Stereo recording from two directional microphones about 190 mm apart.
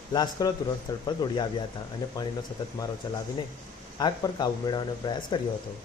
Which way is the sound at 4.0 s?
20° left (ahead or behind).